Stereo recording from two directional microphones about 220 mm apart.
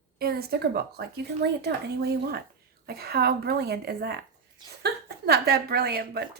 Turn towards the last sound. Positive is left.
turn(degrees=-45)  # may be behind; listen again after turning